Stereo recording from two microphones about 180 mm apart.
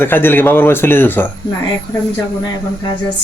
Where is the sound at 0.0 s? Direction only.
10° left (ahead or behind).